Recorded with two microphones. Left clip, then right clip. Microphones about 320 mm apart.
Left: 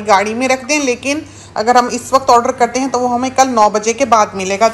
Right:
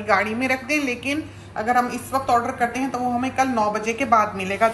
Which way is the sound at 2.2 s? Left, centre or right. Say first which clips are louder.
Left 9 dB; centre.